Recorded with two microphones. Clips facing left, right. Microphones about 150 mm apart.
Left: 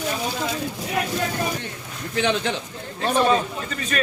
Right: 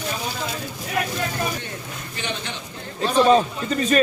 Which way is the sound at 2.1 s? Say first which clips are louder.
Left 9 dB; 90° left.